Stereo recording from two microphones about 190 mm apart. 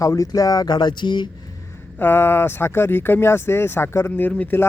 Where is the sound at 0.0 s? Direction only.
15° left (ahead or behind).